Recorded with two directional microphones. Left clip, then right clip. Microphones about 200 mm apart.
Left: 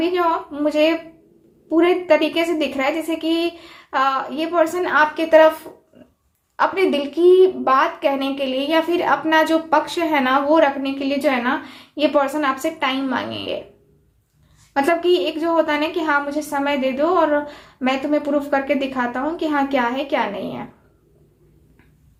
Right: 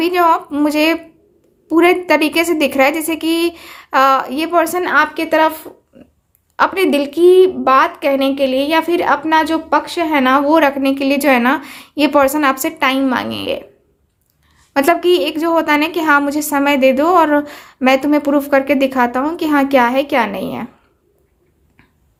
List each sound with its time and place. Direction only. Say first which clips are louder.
0.0 s a woman's voice: right 6 dB; 55° right (ahead or behind)
14.7 s a woman's voice: right 5 dB; 45° right (ahead or behind)